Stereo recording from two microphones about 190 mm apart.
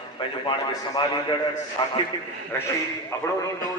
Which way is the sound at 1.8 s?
25° left (ahead or behind).